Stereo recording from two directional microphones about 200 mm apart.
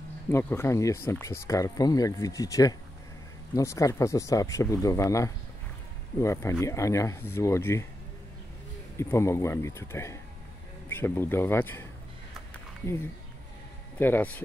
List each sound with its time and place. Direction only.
0.3 s speech: 10° left (ahead or behind)
8.9 s speech: 15° left (ahead or behind)
13.9 s speech: 10° left (ahead or behind)